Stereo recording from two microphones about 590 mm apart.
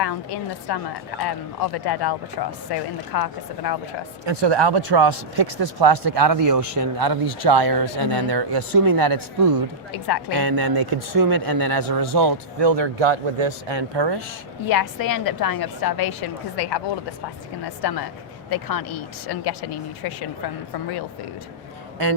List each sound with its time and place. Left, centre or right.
0.7 s a woman's voice: left
4.3 s speech: right
14.7 s a woman's voice: left
18.9 s speech: left